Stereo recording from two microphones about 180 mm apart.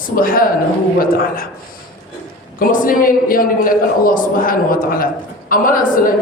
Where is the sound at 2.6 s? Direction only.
50° left (ahead or behind).